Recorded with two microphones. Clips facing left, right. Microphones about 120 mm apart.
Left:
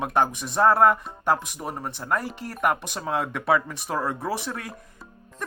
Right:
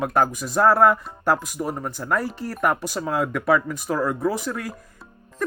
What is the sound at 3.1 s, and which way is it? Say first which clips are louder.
Speech: right 2 dB; 25° left (ahead or behind).